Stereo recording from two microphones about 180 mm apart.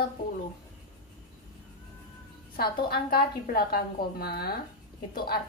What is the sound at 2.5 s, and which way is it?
A woman's voice, 55° left (ahead or behind).